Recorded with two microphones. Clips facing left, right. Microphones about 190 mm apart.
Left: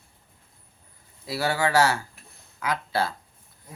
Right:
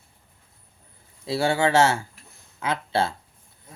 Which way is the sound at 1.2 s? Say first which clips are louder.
Right 4 dB; 25° right (ahead or behind).